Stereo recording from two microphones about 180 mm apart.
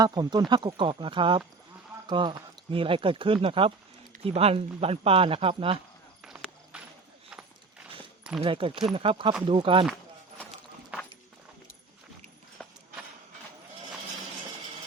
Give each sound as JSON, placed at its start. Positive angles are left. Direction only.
{"t": 0.0, "sound": "speech", "side_deg": -20}
{"t": 6.2, "sound": "clip-clop", "side_deg": -5}
{"t": 8.4, "sound": "speech", "side_deg": -30}
{"t": 12.6, "sound": "clip-clop", "side_deg": 5}